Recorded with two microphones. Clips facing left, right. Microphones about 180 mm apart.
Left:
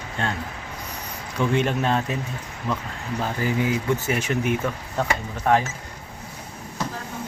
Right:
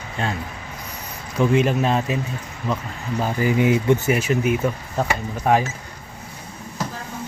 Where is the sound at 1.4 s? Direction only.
5° right (ahead or behind).